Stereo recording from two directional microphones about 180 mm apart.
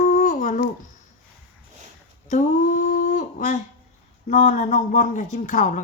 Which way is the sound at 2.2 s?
45° left (ahead or behind).